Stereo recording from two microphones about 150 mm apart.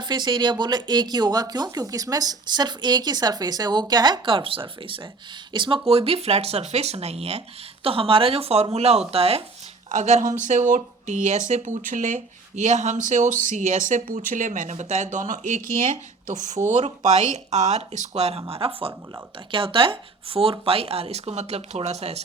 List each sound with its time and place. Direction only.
0.0 s speech: 30° right (ahead or behind)
6.1 s speech: 45° right (ahead or behind)